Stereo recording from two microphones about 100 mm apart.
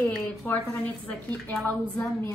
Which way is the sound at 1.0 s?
10° left (ahead or behind).